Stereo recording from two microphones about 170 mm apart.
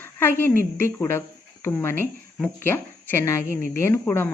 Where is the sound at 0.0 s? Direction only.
15° left (ahead or behind).